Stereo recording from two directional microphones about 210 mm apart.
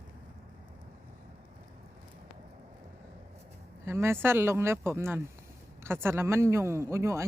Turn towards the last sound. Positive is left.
turn(degrees=-15)  # may be behind; listen again after turning